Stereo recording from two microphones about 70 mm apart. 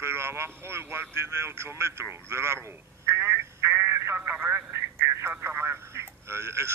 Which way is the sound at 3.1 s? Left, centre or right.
Right.